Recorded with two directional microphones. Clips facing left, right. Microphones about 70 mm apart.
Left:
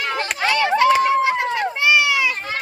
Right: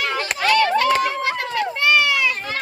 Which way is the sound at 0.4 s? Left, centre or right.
Centre.